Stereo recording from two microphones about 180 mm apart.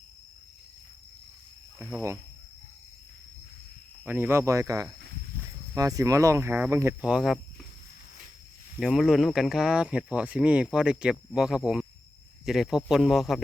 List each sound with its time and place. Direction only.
1.8 s speech: 15° right (ahead or behind)
4.0 s speech: 10° right (ahead or behind)
7.1 s speech: centre (ahead or behind)
8.8 s speech: centre (ahead or behind)